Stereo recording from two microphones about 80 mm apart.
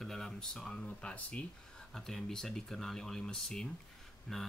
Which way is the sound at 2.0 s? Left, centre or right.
Centre.